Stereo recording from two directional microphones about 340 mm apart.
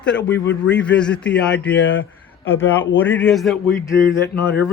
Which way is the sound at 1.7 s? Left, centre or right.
Left.